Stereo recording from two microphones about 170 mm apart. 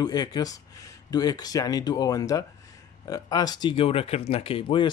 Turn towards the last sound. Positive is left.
turn(degrees=30)  # may be behind; listen again after turning